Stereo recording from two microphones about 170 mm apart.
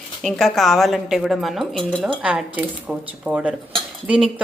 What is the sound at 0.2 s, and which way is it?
Speech, centre (ahead or behind).